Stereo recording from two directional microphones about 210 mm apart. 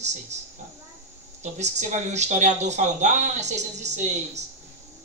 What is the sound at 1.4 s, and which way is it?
Speech, 35° right (ahead or behind).